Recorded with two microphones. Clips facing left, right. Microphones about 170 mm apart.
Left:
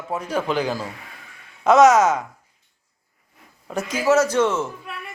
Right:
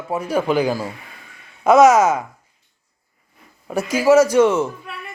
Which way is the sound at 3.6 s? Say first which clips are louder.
Right 5 dB; 10° right (ahead or behind).